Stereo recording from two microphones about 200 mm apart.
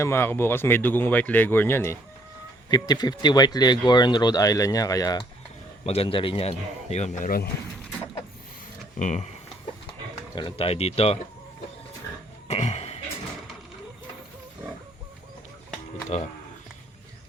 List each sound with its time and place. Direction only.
0.0 s speech: 10° left (ahead or behind)
5.8 s speech: 30° left (ahead or behind)
9.0 s speech: 40° left (ahead or behind)
10.3 s speech: 25° left (ahead or behind)
12.5 s cough: 35° left (ahead or behind)